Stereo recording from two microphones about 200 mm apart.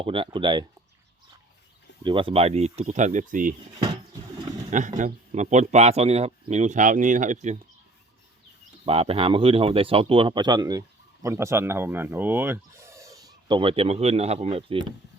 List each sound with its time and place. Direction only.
0.0 s speech: 25° right (ahead or behind)
2.0 s a man's voice: 25° right (ahead or behind)
4.7 s a man's voice: 40° right (ahead or behind)
8.9 s speech: 30° right (ahead or behind)